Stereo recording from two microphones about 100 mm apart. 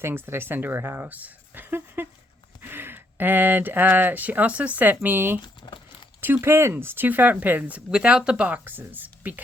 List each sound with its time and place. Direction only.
0.0 s speech: 25° right (ahead or behind)
5.6 s crumpling: 55° left (ahead or behind)
6.1 s speech: 20° right (ahead or behind)